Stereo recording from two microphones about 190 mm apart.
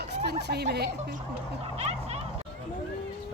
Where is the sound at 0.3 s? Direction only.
60° right (ahead or behind).